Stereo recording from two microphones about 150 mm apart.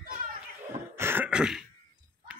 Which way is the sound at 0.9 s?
15° right (ahead or behind).